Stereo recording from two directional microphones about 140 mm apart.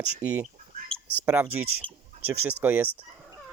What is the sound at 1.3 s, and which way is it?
Speech, 10° right (ahead or behind).